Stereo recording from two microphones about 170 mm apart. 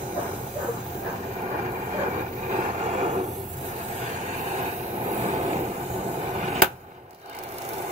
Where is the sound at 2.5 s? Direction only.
40° right (ahead or behind).